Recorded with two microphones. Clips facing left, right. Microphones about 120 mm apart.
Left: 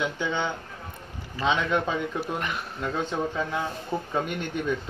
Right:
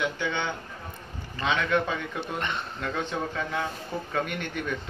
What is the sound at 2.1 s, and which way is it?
Speech, 5° left (ahead or behind).